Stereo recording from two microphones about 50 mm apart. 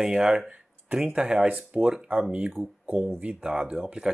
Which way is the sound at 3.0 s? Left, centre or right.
Right.